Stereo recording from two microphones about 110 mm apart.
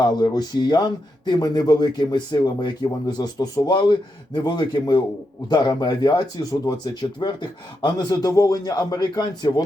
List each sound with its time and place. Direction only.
0.0 s a man's voice: 40° left (ahead or behind)